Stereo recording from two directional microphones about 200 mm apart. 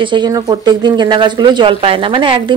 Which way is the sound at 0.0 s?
20° right (ahead or behind).